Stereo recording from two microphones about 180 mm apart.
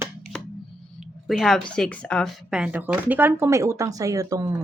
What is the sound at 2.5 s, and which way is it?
Speech, 5° right (ahead or behind).